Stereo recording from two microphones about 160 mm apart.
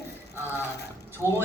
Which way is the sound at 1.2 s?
15° right (ahead or behind).